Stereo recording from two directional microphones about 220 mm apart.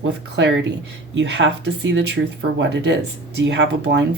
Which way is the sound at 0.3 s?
50° right (ahead or behind).